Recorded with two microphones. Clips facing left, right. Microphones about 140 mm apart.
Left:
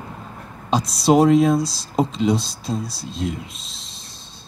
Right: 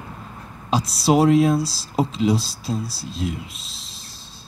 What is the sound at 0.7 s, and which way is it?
Speech, 5° right (ahead or behind).